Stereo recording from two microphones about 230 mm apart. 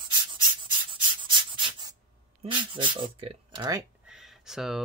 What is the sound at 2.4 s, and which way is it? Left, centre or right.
Speech, right.